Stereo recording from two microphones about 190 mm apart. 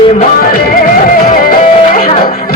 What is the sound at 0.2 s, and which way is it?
Music, 50° left (ahead or behind).